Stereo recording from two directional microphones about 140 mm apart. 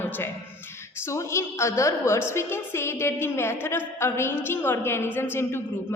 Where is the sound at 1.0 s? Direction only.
20° left (ahead or behind).